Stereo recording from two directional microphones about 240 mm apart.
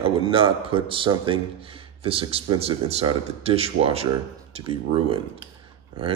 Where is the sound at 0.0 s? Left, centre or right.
Right.